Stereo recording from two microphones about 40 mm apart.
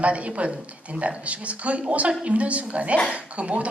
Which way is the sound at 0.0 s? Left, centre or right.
Right.